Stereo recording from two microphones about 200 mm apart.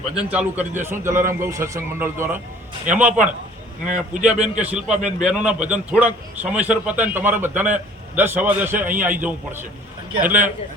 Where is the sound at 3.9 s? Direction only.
40° right (ahead or behind).